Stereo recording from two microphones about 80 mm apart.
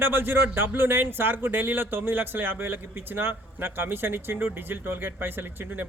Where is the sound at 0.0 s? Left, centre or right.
Right.